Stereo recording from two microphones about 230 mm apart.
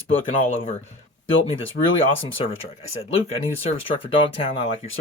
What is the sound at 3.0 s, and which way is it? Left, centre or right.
Speech, left.